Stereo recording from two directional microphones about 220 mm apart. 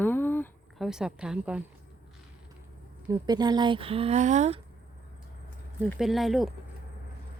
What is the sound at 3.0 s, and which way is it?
Speech, 20° right (ahead or behind).